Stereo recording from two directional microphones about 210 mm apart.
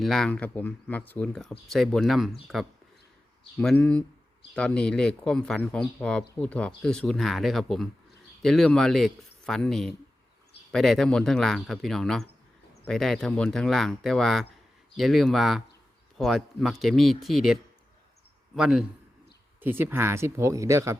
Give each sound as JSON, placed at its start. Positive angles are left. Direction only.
{"t": 0.0, "sound": "speech", "side_deg": 0}